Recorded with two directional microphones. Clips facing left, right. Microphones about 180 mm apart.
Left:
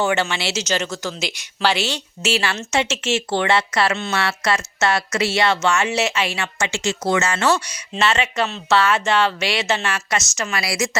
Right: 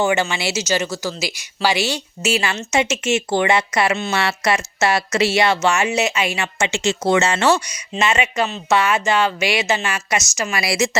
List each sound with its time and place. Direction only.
0.0 s a woman's voice: 10° right (ahead or behind)
7.9 s a woman's voice: 15° right (ahead or behind)